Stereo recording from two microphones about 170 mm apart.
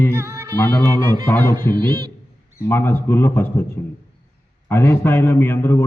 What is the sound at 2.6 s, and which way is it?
A man's voice, 15° left (ahead or behind).